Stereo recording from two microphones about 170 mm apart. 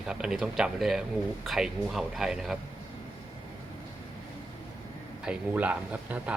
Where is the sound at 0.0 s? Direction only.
5° right (ahead or behind).